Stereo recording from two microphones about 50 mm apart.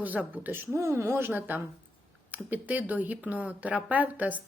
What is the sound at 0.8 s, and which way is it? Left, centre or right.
Speech, right.